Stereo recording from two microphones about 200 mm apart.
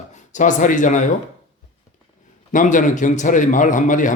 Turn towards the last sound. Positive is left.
turn(degrees=40)  # may be behind; listen again after turning